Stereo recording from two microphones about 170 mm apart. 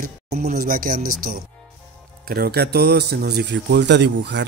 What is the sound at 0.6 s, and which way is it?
Music, 55° right (ahead or behind).